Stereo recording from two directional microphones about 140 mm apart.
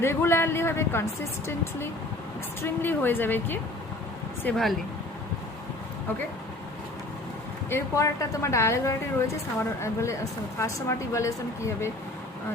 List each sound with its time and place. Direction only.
0.0 s speech: 15° left (ahead or behind)
4.4 s speech: centre (ahead or behind)
7.7 s a woman's voice: 20° left (ahead or behind)